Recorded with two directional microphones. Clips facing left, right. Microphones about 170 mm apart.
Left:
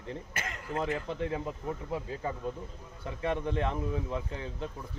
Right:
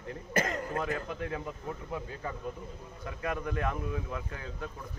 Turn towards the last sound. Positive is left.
turn(degrees=25)  # may be behind; listen again after turning